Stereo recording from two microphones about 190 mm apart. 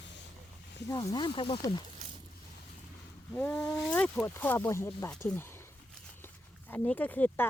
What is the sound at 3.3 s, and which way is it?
Speech, 10° left (ahead or behind).